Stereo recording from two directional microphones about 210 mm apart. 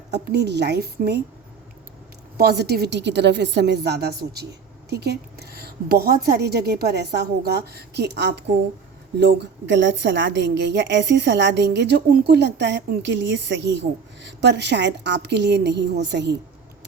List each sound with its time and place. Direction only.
0.1 s a woman's voice: 50° right (ahead or behind)
2.4 s a woman's voice: 50° right (ahead or behind)